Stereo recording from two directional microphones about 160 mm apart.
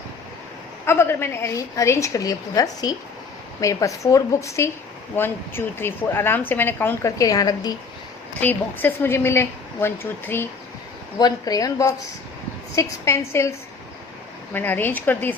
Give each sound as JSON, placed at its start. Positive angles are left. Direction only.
{"t": 0.9, "sound": "a woman's voice", "side_deg": 15}
{"t": 8.4, "sound": "a woman's voice", "side_deg": 10}
{"t": 11.2, "sound": "a woman's voice", "side_deg": 25}